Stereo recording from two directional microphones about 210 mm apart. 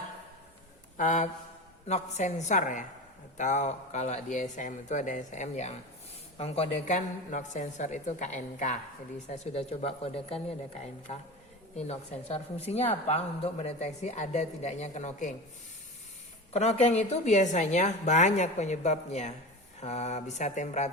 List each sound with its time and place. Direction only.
0.9 s a woman's voice: 35° left (ahead or behind)
16.5 s a woman's voice: 30° left (ahead or behind)